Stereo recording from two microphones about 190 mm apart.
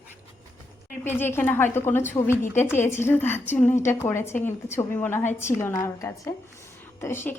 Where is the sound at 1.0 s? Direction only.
10° left (ahead or behind).